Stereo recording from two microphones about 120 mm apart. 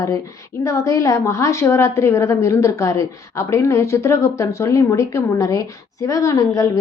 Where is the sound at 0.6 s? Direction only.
25° left (ahead or behind).